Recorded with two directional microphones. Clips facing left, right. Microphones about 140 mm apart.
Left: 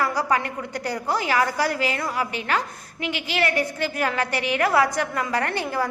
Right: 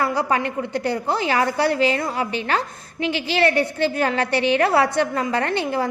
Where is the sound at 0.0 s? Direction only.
25° right (ahead or behind).